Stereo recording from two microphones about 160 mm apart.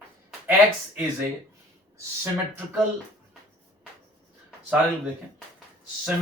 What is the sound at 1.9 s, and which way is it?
Speech, 15° right (ahead or behind).